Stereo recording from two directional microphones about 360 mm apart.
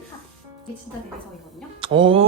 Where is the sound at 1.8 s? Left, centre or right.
Centre.